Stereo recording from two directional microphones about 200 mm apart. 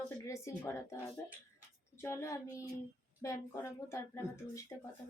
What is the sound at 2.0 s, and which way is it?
Child singing, 15° left (ahead or behind).